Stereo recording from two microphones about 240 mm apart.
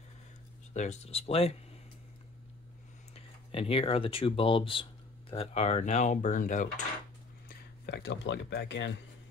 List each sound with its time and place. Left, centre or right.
0.7 s speech: left
3.5 s speech: left
7.4 s speech: left